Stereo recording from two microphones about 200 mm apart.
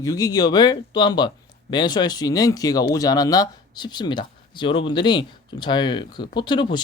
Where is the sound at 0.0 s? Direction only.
15° left (ahead or behind).